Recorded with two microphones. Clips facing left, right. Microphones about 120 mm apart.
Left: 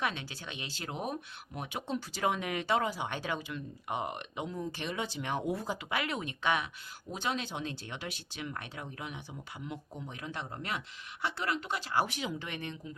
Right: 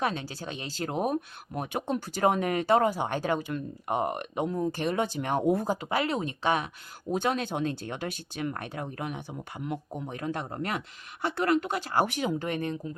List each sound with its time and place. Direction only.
0.0 s speech: 40° right (ahead or behind)
7.1 s speech: 50° right (ahead or behind)